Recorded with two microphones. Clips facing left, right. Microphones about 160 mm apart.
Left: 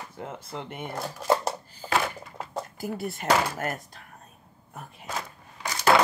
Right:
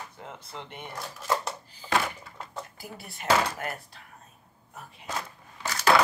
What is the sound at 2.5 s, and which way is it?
Speech, 45° left (ahead or behind).